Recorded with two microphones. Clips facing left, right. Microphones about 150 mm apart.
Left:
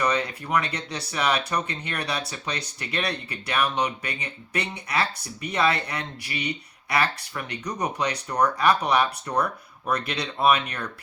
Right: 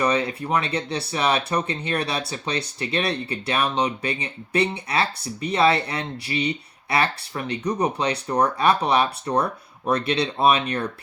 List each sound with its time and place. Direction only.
0.0 s speech: 25° right (ahead or behind)